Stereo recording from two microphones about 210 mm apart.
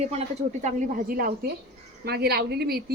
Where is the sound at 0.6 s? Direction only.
45° right (ahead or behind).